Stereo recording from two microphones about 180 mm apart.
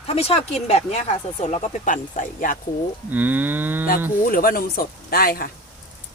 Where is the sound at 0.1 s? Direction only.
35° left (ahead or behind).